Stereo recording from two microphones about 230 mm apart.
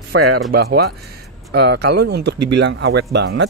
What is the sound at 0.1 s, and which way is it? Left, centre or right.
Speech, right.